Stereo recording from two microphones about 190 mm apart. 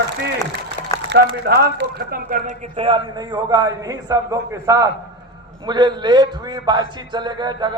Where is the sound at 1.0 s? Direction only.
55° right (ahead or behind).